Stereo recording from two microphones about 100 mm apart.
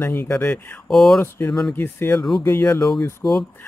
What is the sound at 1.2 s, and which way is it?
Speech, 20° left (ahead or behind).